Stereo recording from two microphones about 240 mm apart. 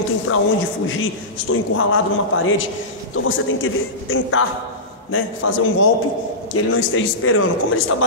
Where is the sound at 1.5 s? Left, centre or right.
Left.